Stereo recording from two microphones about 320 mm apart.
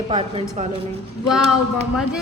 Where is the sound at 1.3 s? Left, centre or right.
Centre.